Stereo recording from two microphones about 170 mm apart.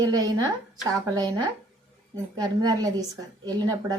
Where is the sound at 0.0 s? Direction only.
20° right (ahead or behind).